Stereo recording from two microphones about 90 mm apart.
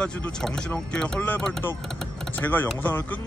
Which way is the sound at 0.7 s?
10° left (ahead or behind).